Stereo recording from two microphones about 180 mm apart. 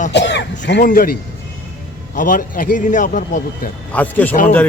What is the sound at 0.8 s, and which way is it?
Speech, 55° left (ahead or behind).